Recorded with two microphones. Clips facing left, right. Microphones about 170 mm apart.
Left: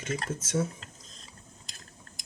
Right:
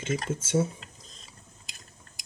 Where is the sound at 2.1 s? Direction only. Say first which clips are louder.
Left 2 dB; centre (ahead or behind).